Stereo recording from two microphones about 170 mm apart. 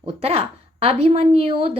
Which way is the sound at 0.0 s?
35° right (ahead or behind).